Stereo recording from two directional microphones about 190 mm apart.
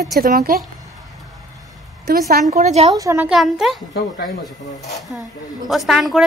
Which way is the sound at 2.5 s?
35° right (ahead or behind).